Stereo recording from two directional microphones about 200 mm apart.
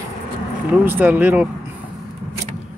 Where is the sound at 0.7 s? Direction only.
10° right (ahead or behind).